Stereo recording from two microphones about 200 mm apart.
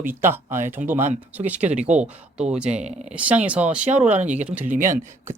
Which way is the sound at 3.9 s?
35° right (ahead or behind).